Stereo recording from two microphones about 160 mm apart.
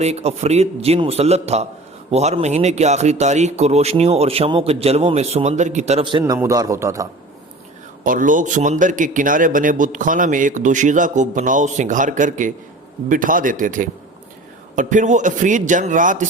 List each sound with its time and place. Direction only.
0.0 s speech: 40° right (ahead or behind)
6.1 s a man's voice: 25° right (ahead or behind)
8.0 s a man's voice: 55° right (ahead or behind)